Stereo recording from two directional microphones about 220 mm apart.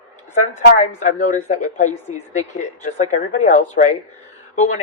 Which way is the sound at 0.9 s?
35° left (ahead or behind).